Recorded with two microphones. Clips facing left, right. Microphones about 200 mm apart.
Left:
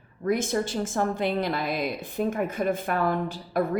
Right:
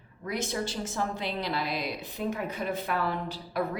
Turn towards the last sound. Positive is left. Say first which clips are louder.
# left 5 dB
turn(degrees=50)  # may be behind; listen again after turning